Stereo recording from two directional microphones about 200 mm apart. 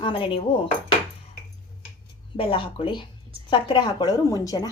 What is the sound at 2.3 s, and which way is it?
Speech, 25° left (ahead or behind).